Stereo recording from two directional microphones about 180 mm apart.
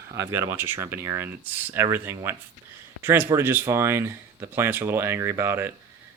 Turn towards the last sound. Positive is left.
turn(degrees=-15)  # may be behind; listen again after turning